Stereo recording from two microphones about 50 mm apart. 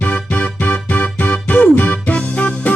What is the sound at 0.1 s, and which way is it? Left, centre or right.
Music, left.